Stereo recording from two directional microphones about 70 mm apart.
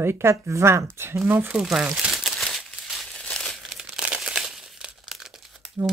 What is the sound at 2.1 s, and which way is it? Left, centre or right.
Crumpling, centre.